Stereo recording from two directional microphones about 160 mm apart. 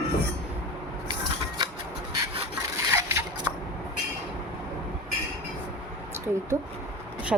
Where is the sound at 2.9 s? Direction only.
15° right (ahead or behind).